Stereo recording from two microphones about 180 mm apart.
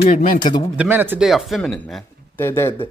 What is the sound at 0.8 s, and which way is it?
Speech, 10° right (ahead or behind).